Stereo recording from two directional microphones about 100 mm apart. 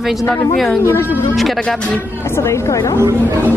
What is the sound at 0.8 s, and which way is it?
Speech, 25° left (ahead or behind).